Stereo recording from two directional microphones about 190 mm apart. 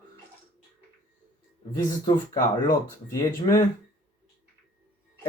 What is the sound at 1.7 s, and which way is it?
Speech, 20° left (ahead or behind).